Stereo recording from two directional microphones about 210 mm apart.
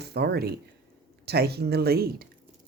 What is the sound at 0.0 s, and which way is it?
Speech, 50° right (ahead or behind).